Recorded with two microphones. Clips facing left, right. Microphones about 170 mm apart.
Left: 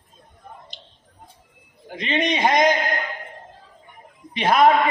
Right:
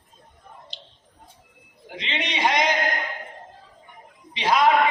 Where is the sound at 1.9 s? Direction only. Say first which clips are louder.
Left 7 dB; 50° left (ahead or behind).